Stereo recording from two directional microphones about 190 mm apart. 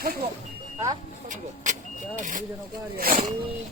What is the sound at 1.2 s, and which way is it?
Vehicle, 40° right (ahead or behind).